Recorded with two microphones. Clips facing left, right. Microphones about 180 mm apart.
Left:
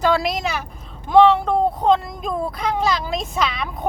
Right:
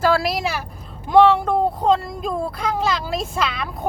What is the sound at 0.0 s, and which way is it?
Speech, 5° right (ahead or behind).